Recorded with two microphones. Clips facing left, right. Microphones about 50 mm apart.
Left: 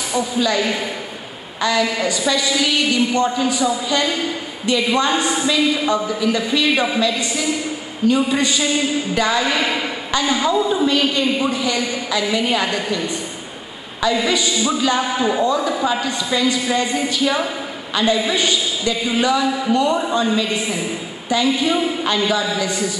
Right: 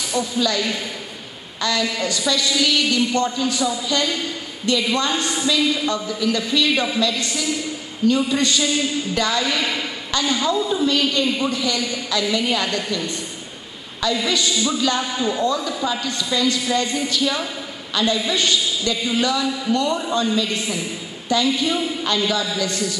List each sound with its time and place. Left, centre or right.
0.4 s a woman's voice: centre